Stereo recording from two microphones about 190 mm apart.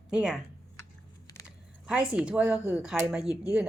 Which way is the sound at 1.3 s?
20° left (ahead or behind).